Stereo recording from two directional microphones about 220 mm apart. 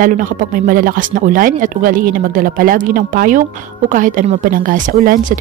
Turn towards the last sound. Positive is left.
turn(degrees=-40)  # may be behind; listen again after turning